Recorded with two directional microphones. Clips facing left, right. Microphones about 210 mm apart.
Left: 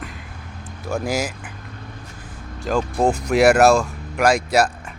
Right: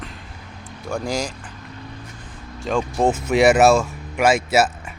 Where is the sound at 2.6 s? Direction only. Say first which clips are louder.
Even; centre (ahead or behind).